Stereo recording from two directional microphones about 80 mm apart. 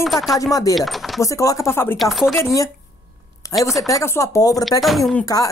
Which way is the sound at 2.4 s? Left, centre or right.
Left.